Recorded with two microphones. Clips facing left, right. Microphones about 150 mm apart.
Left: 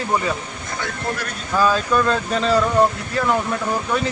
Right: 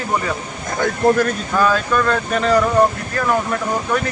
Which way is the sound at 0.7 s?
50° right (ahead or behind).